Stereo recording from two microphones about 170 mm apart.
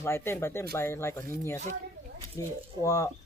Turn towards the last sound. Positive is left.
turn(degrees=20)  # may be behind; listen again after turning